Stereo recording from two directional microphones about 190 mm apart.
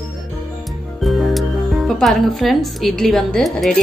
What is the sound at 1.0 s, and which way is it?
Speech, centre (ahead or behind).